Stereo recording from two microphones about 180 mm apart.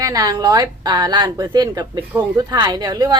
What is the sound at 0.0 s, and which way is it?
A woman's voice, 20° right (ahead or behind).